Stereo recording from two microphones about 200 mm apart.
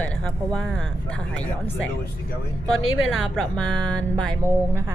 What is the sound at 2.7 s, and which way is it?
Speech, 90° left.